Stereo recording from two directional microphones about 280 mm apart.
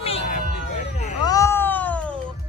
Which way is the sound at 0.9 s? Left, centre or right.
Left.